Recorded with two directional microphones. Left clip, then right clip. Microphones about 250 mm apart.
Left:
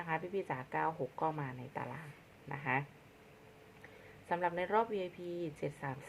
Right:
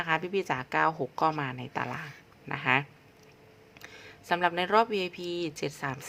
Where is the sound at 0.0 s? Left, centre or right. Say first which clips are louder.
Right 9 dB; right.